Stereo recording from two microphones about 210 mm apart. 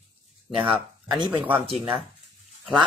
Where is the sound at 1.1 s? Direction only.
20° right (ahead or behind).